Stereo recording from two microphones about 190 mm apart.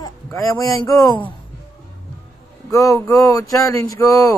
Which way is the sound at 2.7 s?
15° left (ahead or behind).